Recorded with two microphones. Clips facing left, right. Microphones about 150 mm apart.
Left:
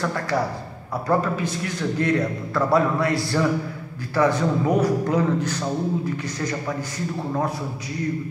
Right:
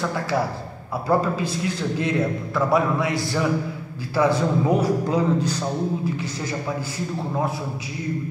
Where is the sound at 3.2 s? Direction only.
20° right (ahead or behind).